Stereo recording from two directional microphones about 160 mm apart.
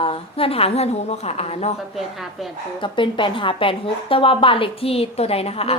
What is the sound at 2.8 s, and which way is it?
A woman's voice, 30° left (ahead or behind).